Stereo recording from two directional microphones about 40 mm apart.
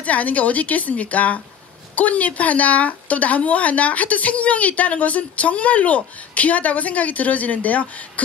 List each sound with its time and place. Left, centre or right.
0.0 s speech: left